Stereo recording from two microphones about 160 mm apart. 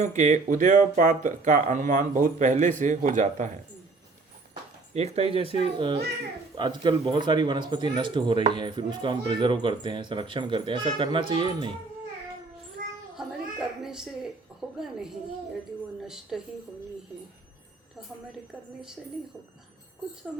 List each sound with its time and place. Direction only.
0.0 s speech: 50° right (ahead or behind)
4.9 s speech: 40° right (ahead or behind)
12.8 s child singing: 60° right (ahead or behind)
13.1 s cat: 5° right (ahead or behind)
14.8 s a woman's voice: 5° right (ahead or behind)
20.3 s a woman's voice: centre (ahead or behind)